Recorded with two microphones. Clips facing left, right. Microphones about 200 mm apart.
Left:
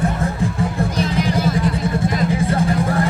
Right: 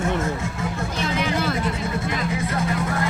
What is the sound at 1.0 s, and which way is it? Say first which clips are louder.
Music: left 3 dB; 35° left (ahead or behind).